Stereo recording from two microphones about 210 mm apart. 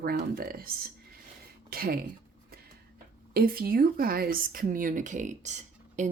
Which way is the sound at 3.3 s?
45° right (ahead or behind).